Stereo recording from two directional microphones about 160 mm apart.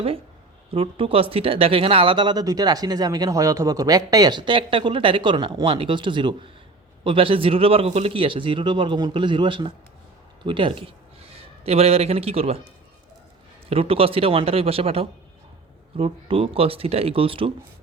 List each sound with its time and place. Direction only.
0.7 s a man's voice: 35° right (ahead or behind)
13.7 s speech: 35° right (ahead or behind)